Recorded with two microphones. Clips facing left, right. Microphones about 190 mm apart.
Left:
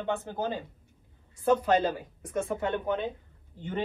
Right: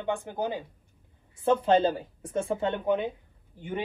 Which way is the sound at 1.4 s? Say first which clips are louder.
Right 2 dB; 25° right (ahead or behind).